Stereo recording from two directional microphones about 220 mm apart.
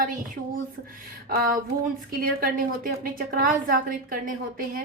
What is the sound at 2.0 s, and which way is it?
A woman's voice, 40° right (ahead or behind).